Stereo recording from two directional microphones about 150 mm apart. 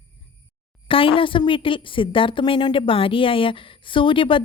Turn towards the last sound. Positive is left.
turn(degrees=35)  # may be behind; listen again after turning